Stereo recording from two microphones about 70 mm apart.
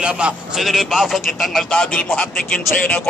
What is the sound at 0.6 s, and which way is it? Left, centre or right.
A man's voice, centre.